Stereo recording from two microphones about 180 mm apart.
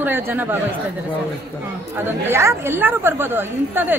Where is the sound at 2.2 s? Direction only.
15° right (ahead or behind).